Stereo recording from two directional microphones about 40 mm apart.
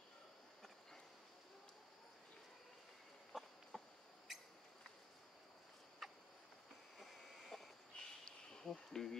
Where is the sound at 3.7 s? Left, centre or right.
Centre.